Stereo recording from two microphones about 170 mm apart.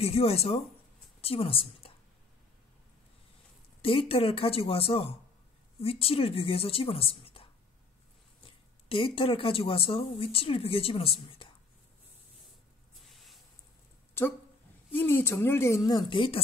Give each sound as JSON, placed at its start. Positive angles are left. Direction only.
{"t": 0.0, "sound": "a woman's voice", "side_deg": 35}
{"t": 3.8, "sound": "a woman's voice", "side_deg": 35}
{"t": 8.8, "sound": "a woman's voice", "side_deg": 30}
{"t": 13.1, "sound": "a sound", "side_deg": 0}
{"t": 14.9, "sound": "a woman's voice", "side_deg": 10}